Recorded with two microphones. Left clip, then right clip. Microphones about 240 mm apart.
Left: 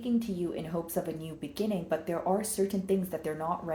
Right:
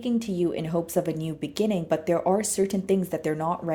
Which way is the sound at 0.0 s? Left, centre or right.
Right.